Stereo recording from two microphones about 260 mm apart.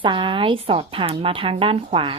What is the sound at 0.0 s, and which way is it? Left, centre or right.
A woman's voice, centre.